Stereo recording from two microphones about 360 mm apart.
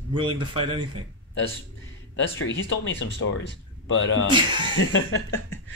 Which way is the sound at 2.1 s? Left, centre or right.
Left.